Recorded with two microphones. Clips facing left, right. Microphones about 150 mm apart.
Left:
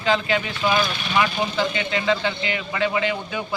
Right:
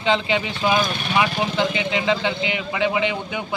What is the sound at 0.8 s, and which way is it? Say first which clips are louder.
Speech: right 1 dB; 50° right (ahead or behind).